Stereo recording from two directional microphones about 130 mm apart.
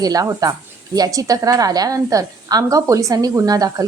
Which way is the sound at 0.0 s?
30° right (ahead or behind).